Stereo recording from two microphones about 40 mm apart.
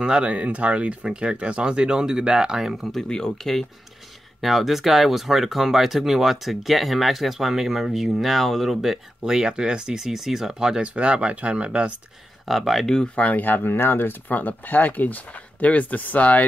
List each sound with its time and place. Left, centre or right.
0.0 s speech: right
1.0 s speech: right
2.9 s speech: centre
4.4 s speech: centre
10.8 s speech: right
12.4 s speech: centre
13.1 s speech: left
13.4 s speech: left
13.7 s speech: left